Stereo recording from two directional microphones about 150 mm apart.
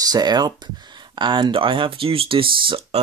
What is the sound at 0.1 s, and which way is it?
Speech, 25° right (ahead or behind).